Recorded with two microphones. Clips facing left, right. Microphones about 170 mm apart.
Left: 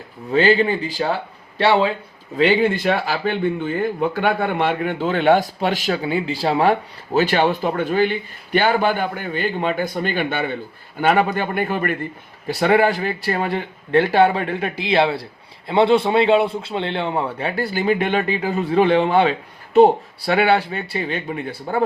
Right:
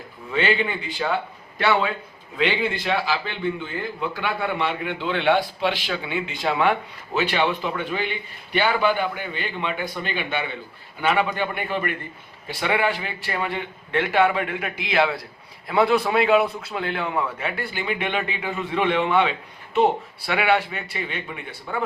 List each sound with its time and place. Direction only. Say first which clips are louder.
0.3 s speech: left 7 dB; 35° left (ahead or behind)
2.3 s a man's voice: left 7 dB; 45° left (ahead or behind)